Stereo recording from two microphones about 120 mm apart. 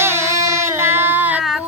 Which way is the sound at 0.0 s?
20° right (ahead or behind).